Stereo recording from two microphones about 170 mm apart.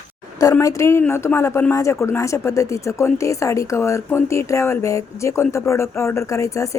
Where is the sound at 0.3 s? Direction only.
20° left (ahead or behind).